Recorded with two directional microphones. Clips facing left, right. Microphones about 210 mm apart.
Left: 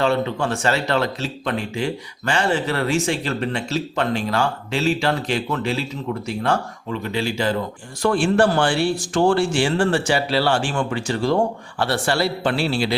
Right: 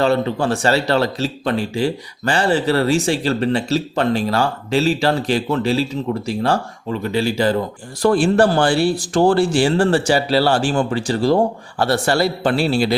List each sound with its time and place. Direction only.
0.0 s speech: 35° right (ahead or behind)